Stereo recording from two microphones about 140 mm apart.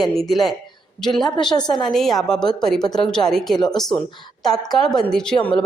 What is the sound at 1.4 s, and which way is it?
Speech, 30° left (ahead or behind).